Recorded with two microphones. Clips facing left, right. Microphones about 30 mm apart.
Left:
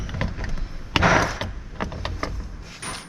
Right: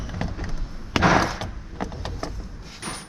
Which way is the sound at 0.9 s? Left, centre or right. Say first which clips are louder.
Even; left.